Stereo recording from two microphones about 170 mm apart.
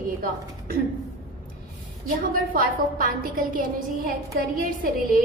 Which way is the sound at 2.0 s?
55° right (ahead or behind).